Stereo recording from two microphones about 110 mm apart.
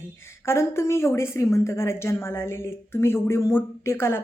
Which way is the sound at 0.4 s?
25° left (ahead or behind).